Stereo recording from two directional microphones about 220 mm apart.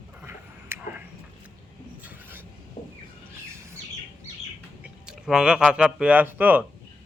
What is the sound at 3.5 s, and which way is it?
Bird, 10° right (ahead or behind).